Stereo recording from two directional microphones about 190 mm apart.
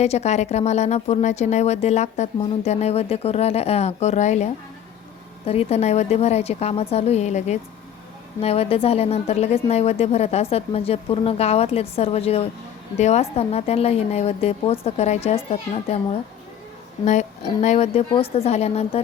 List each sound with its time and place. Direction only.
0.0 s a woman's voice: 35° left (ahead or behind)
17.1 s a woman's voice: 40° left (ahead or behind)